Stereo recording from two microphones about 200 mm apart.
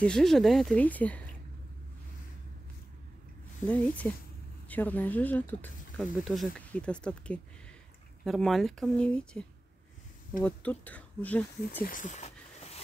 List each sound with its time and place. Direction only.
0.0 s speech: 5° left (ahead or behind)
3.6 s speech: 5° left (ahead or behind)
11.8 s a sound: 40° left (ahead or behind)